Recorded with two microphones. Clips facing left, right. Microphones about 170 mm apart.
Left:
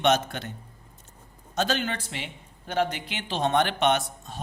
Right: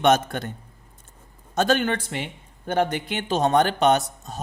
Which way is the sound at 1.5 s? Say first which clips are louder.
Right 6 dB; 50° right (ahead or behind).